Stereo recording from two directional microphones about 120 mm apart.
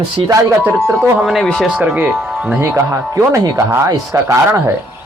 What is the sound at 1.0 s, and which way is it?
Speech, centre (ahead or behind).